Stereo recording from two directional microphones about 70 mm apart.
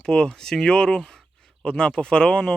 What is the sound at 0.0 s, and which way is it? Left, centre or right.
Speech, centre.